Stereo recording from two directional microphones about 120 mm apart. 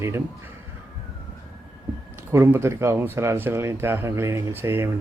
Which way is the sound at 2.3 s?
20° right (ahead or behind).